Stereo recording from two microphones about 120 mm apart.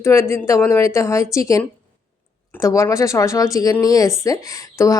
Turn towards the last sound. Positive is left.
turn(degrees=30)  # may be behind; listen again after turning